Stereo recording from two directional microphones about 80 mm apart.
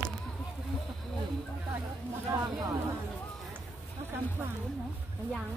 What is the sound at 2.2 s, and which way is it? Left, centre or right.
Speech, right.